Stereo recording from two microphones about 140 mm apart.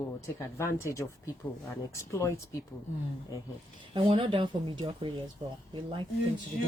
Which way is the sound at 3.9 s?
40° right (ahead or behind).